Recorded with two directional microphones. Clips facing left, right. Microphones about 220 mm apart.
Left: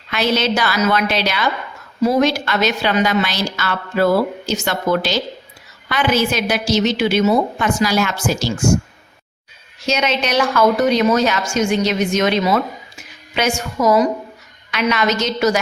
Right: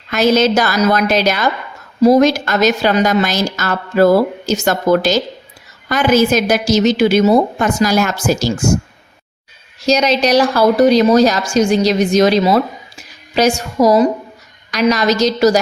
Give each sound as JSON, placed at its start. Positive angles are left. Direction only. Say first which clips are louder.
{"t": 0.1, "sound": "a woman's voice", "louder": "right 6 dB", "side_deg": -45}
{"t": 9.8, "sound": "a woman's voice", "louder": "right 6 dB", "side_deg": -35}